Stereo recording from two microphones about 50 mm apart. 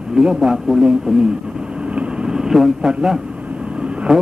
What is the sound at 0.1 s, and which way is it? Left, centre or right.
Speech, centre.